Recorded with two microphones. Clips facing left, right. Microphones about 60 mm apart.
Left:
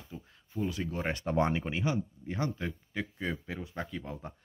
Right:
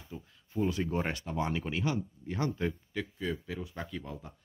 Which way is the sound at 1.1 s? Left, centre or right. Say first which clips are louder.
Left 5 dB; left.